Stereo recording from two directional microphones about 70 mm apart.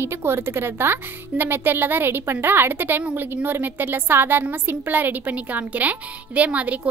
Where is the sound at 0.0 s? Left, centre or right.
Right.